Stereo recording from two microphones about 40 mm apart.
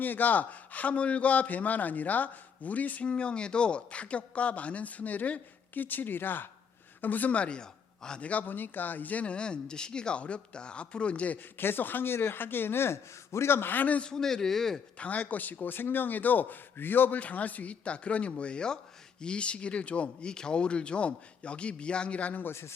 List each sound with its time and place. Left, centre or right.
0.0 s speech: left
3.1 s speech: left
7.0 s a man's voice: left
7.3 s speech: left
8.2 s speech: left
11.5 s a man's voice: left
13.7 s speech: left
14.1 s a man's voice: centre
14.9 s a man's voice: left
17.2 s speech: left